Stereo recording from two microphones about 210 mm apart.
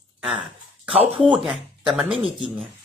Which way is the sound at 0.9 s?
25° right (ahead or behind).